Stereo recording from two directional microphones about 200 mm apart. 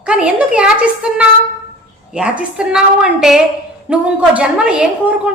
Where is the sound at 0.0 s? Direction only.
5° right (ahead or behind).